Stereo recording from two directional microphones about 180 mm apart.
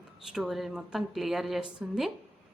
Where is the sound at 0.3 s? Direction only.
Centre (ahead or behind).